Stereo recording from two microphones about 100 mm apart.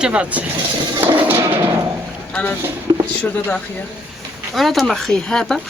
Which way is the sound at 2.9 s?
30° right (ahead or behind).